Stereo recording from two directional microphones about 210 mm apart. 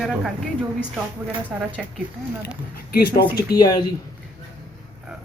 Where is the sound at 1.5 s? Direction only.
5° right (ahead or behind).